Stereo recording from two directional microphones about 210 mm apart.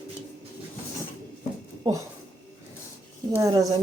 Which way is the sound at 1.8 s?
15° right (ahead or behind).